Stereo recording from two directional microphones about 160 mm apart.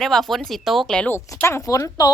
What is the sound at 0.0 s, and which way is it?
Speech, centre (ahead or behind).